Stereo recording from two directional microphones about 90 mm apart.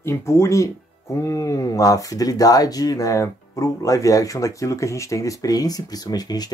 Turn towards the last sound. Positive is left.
turn(degrees=45)  # may be behind; listen again after turning